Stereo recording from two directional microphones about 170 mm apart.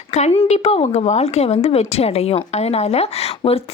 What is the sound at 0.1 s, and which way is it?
A woman's voice, 40° left (ahead or behind).